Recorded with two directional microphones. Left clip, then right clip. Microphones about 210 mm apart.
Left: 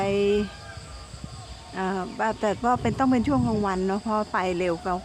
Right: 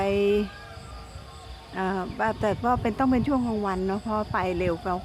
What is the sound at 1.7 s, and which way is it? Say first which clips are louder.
Speech: even; 5° left (ahead or behind).